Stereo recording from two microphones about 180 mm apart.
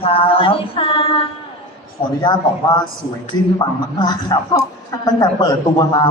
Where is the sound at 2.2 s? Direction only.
25° left (ahead or behind).